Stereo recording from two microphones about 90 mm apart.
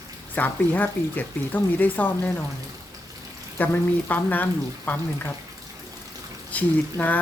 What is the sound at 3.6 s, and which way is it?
Speech, 20° left (ahead or behind).